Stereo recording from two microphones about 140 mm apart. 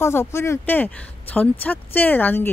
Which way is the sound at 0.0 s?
20° left (ahead or behind).